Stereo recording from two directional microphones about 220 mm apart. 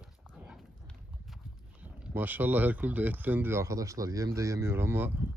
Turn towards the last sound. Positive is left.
turn(degrees=-10)  # may be behind; listen again after turning